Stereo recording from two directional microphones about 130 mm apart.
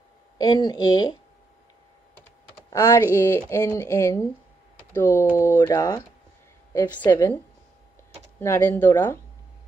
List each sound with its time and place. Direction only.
0.4 s speech: 35° left (ahead or behind)
2.7 s speech: 20° left (ahead or behind)
8.4 s speech: 15° left (ahead or behind)